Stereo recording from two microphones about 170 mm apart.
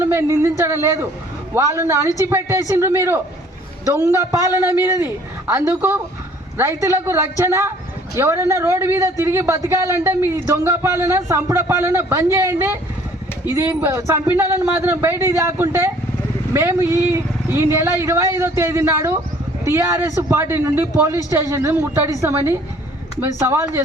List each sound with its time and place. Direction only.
0.0 s a man's voice: 15° right (ahead or behind)